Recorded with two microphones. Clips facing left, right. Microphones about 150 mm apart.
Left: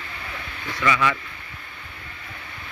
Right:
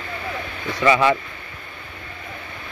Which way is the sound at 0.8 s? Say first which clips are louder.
Right 6 dB; 30° right (ahead or behind).